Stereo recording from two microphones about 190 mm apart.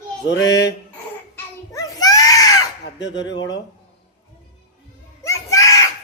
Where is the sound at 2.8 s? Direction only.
70° left (ahead or behind).